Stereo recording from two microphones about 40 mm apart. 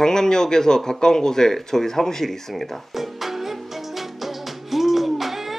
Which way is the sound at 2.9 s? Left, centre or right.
Centre.